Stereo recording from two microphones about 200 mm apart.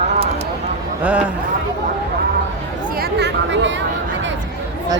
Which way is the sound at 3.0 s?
55° right (ahead or behind).